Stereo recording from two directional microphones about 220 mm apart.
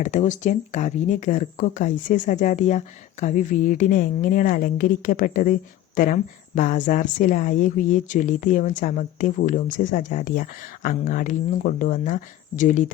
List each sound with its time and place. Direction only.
0.0 s speech: 35° left (ahead or behind)